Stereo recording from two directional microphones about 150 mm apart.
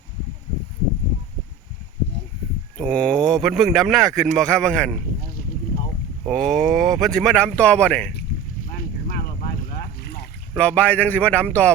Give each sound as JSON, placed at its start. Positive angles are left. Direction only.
{"t": 2.7, "sound": "speech", "side_deg": 5}
{"t": 6.2, "sound": "speech", "side_deg": 0}
{"t": 8.7, "sound": "boat", "side_deg": 85}
{"t": 10.5, "sound": "speech", "side_deg": 5}